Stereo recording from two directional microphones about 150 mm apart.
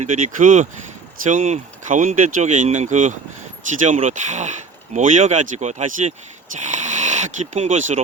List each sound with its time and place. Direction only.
0.0 s speech: 55° right (ahead or behind)